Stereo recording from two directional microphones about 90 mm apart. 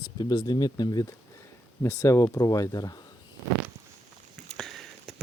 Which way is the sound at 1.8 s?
35° left (ahead or behind).